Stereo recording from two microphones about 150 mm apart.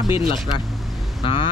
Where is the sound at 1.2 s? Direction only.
35° left (ahead or behind).